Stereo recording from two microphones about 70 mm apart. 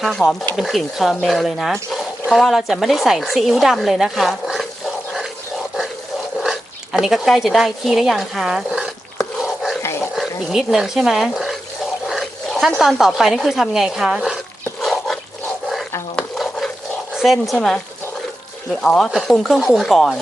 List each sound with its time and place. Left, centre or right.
0.0 s a woman's voice: centre
7.0 s a woman's voice: centre
9.8 s dog: left
10.2 s speech: centre
12.0 s dog: centre
13.0 s a woman's voice: centre
14.8 s pig: centre
16.4 s stir: centre
17.2 s a woman's voice: centre
18.8 s speech: centre
19.1 s a woman's voice: centre